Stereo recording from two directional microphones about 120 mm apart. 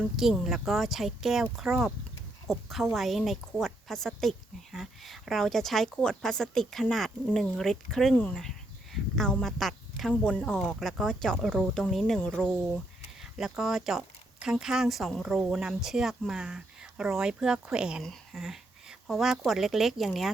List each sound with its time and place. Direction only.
0.2 s a woman's voice: 5° right (ahead or behind)
8.1 s speech: 15° left (ahead or behind)
8.4 s a woman's voice: centre (ahead or behind)
18.0 s a sound: centre (ahead or behind)
19.5 s a woman's voice: centre (ahead or behind)